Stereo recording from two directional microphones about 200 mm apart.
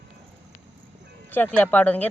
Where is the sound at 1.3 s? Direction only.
10° left (ahead or behind).